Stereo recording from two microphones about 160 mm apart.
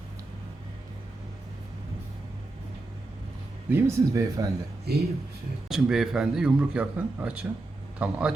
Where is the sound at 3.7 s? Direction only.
15° right (ahead or behind).